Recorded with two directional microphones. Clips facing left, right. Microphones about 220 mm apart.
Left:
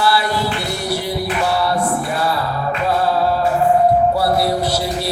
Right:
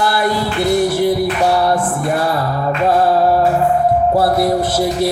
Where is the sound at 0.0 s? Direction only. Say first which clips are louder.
Right 2 dB; 50° right (ahead or behind).